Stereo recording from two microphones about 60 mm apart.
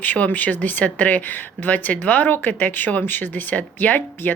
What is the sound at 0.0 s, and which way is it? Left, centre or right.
Speech, left.